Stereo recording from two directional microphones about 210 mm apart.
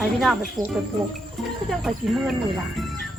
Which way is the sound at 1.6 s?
Centre (ahead or behind).